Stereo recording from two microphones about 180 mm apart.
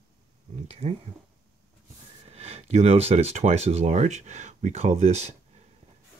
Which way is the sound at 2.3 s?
35° right (ahead or behind).